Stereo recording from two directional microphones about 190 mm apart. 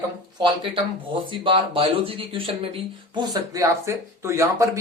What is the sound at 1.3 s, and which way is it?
Speech, 30° right (ahead or behind).